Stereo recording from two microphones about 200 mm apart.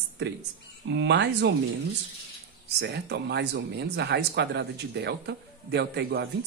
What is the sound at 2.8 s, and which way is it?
Speech, 55° right (ahead or behind).